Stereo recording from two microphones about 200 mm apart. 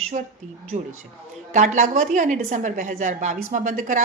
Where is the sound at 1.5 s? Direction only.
40° right (ahead or behind).